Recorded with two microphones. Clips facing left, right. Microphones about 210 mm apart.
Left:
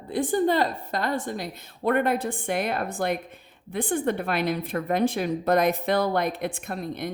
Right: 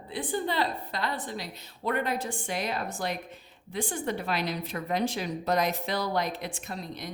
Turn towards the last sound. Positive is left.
turn(degrees=55)  # may be behind; listen again after turning